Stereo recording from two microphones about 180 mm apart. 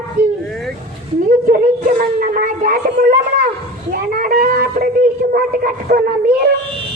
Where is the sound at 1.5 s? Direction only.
50° right (ahead or behind).